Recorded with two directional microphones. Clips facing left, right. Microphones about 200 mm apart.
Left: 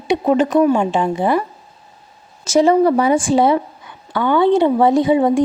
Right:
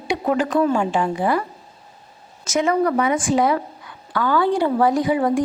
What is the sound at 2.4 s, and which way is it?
Speech, 30° left (ahead or behind).